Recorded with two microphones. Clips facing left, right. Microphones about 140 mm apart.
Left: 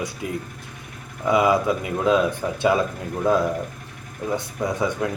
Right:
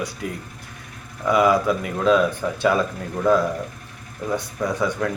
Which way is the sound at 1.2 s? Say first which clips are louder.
Right 1 dB; 25° left (ahead or behind).